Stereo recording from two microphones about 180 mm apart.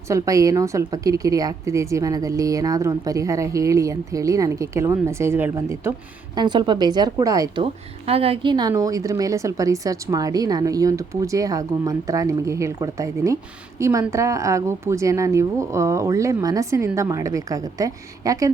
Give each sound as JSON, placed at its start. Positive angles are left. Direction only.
{"t": 0.1, "sound": "a woman's voice", "side_deg": -20}